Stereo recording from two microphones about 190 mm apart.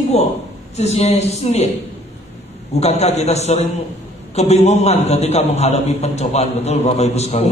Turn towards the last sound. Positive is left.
turn(degrees=35)  # may be behind; listen again after turning